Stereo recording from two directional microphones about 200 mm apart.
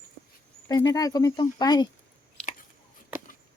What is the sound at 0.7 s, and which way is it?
Speech, 20° left (ahead or behind).